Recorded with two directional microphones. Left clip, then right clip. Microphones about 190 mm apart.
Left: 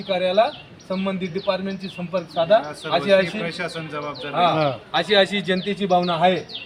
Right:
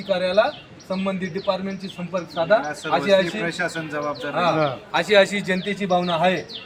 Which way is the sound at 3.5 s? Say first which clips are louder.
Right 3 dB; 30° left (ahead or behind).